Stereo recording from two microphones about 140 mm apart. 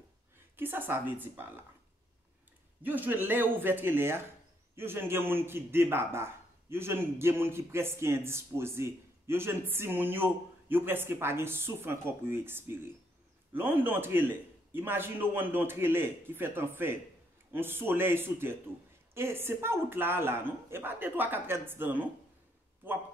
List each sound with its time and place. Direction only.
0.6 s a man's voice: 15° right (ahead or behind)
2.8 s a man's voice: 15° right (ahead or behind)